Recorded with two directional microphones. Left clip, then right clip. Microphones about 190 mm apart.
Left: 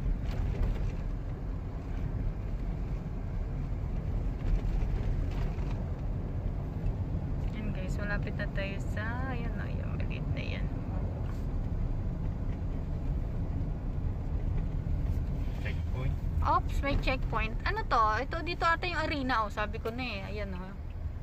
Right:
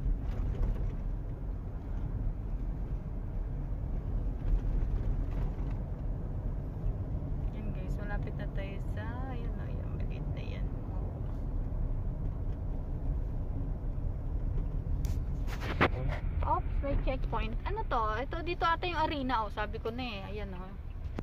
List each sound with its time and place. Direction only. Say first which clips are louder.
8.0 s speech: left 7 dB; centre (ahead or behind)
16.4 s a sound: left 4 dB; 25° left (ahead or behind)
17.0 s speech: left 4 dB; 5° right (ahead or behind)